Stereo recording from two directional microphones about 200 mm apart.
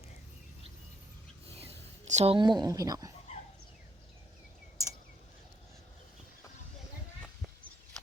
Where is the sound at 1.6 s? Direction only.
30° right (ahead or behind).